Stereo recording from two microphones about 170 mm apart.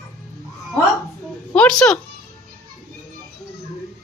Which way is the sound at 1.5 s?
5° left (ahead or behind).